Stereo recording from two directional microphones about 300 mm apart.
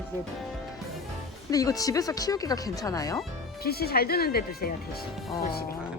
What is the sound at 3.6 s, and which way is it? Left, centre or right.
Speech, left.